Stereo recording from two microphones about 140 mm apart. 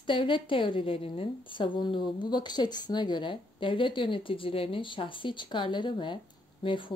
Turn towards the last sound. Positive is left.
turn(degrees=35)  # may be behind; listen again after turning